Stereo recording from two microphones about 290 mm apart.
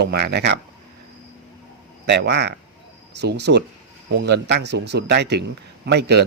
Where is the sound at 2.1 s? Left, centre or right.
Right.